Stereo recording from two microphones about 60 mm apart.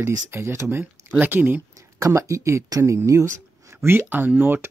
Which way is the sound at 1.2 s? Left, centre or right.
Right.